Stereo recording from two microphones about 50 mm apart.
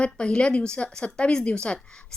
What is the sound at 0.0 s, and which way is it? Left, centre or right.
A woman's voice, centre.